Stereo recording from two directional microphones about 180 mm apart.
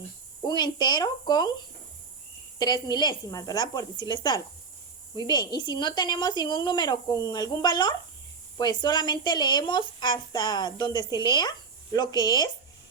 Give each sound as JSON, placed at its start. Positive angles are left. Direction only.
{"t": 0.4, "sound": "speech", "side_deg": 25}
{"t": 2.6, "sound": "speech", "side_deg": 20}